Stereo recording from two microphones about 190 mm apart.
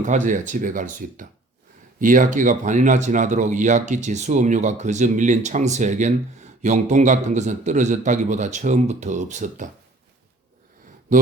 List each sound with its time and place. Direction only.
0.0 s speech: 40° right (ahead or behind)